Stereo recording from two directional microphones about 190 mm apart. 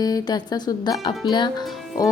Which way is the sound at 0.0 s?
20° left (ahead or behind).